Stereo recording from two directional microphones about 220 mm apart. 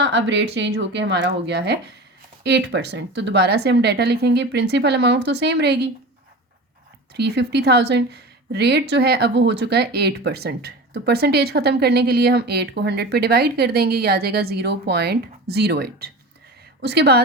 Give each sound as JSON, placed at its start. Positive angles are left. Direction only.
{"t": 0.0, "sound": "a woman's voice", "side_deg": -55}
{"t": 7.1, "sound": "a woman's voice", "side_deg": -50}